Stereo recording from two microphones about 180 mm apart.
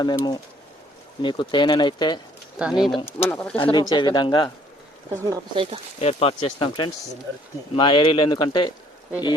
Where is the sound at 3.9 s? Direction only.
25° left (ahead or behind).